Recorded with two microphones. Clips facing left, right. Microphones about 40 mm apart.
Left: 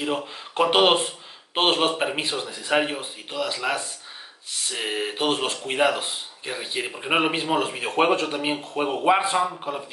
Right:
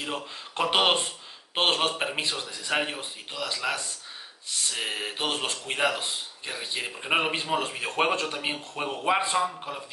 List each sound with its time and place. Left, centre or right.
0.0 s speech: centre